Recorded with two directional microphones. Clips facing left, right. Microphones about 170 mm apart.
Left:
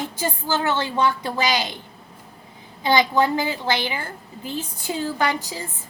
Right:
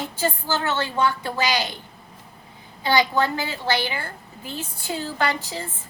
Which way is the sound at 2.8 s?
15° left (ahead or behind).